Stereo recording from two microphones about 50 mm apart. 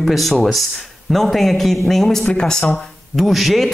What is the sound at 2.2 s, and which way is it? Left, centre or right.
Speech, centre.